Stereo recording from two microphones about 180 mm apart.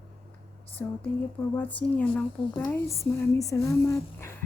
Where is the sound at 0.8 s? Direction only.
10° left (ahead or behind).